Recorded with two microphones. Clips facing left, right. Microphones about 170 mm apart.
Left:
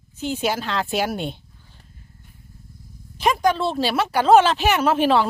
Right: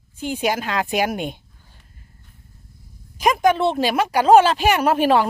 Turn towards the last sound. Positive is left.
turn(degrees=-10)  # may be behind; listen again after turning